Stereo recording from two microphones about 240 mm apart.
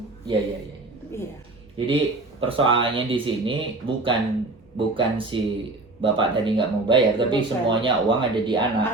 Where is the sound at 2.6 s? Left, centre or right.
Right.